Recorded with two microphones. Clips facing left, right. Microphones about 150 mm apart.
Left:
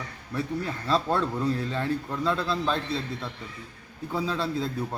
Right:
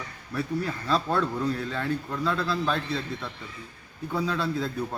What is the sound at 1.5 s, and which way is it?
A man's voice, 30° left (ahead or behind).